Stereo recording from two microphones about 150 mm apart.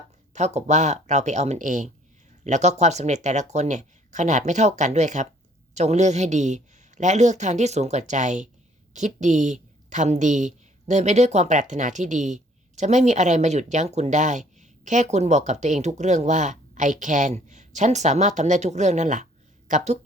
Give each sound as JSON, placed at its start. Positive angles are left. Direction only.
{"t": 0.3, "sound": "a woman's voice", "side_deg": -50}